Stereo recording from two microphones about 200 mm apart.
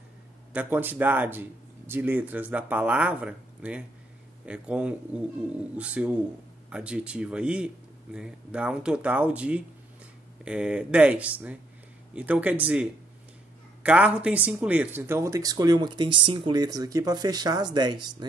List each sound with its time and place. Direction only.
0.5 s speech: 10° right (ahead or behind)
13.8 s speech: 5° right (ahead or behind)